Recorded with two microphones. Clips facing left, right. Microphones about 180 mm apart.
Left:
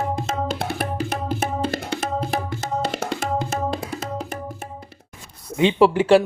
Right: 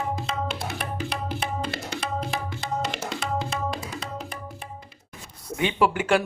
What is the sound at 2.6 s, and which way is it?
Music, 40° left (ahead or behind).